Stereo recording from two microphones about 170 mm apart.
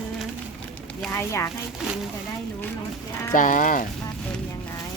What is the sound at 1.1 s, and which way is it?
Speech, 15° left (ahead or behind).